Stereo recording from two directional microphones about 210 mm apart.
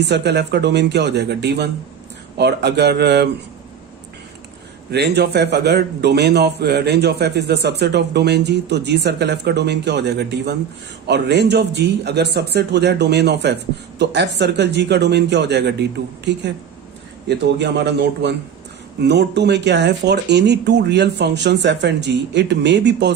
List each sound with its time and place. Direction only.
0.0 s a man's voice: 55° right (ahead or behind)
4.9 s a man's voice: 50° right (ahead or behind)